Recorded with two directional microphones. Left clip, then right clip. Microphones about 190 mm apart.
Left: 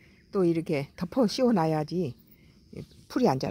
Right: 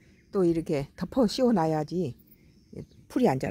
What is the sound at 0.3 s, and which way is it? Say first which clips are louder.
Speech: even; 5° right (ahead or behind).